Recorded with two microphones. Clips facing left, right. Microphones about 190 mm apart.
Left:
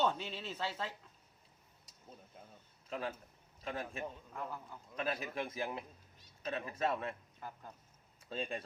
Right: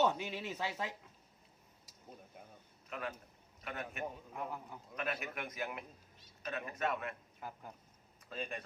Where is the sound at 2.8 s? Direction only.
30° left (ahead or behind).